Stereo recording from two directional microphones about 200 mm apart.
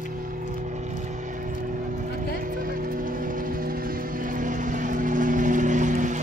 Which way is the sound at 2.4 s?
45° right (ahead or behind).